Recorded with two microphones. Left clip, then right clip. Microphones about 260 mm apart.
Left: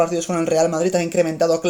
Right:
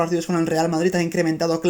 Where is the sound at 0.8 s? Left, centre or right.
Right.